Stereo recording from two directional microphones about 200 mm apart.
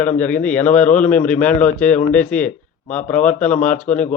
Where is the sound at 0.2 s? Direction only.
5° left (ahead or behind).